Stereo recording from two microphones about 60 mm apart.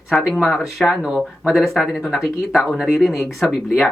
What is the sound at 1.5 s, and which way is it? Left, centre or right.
Speech, centre.